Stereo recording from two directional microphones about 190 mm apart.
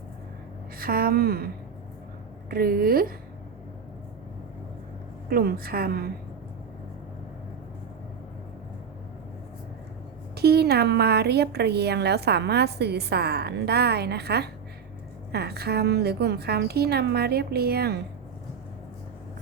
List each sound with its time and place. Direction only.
0.8 s a woman's voice: 50° right (ahead or behind)
2.5 s a woman's voice: 50° right (ahead or behind)
5.3 s a woman's voice: 50° right (ahead or behind)
10.3 s a woman's voice: 55° right (ahead or behind)